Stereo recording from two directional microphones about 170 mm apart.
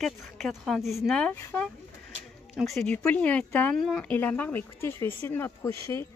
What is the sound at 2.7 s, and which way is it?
Speech, 5° left (ahead or behind).